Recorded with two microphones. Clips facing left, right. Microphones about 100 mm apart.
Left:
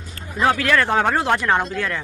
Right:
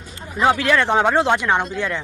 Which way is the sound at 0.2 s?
15° right (ahead or behind).